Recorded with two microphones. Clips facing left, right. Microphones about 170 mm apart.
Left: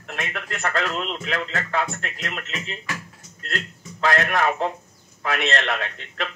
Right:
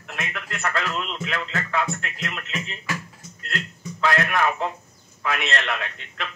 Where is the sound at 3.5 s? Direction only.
40° left (ahead or behind).